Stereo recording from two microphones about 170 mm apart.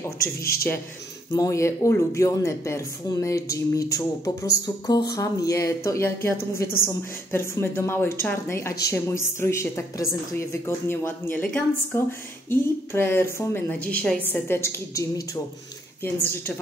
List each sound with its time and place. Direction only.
0.4 s a man's voice: 65° left (ahead or behind)
1.3 s a woman's voice: 20° left (ahead or behind)
7.3 s a woman's voice: 15° left (ahead or behind)